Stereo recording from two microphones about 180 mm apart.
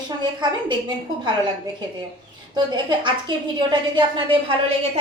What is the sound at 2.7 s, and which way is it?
A woman's voice, 25° right (ahead or behind).